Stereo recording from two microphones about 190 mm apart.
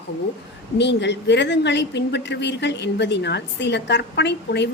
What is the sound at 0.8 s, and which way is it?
A woman's voice, 65° left (ahead or behind).